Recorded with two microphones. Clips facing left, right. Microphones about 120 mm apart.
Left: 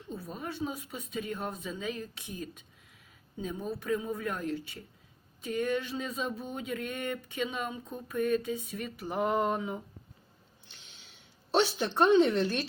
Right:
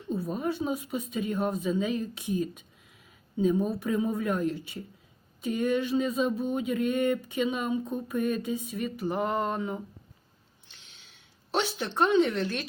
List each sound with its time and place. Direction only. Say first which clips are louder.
0.3 s speech: right 5 dB; 15° right (ahead or behind)
9.0 s a sound: even; 5° left (ahead or behind)
12.1 s a woman's voice: even; 20° left (ahead or behind)